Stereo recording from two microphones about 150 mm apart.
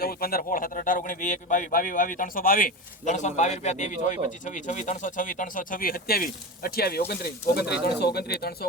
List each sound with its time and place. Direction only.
0.0 s a man's voice: 85° left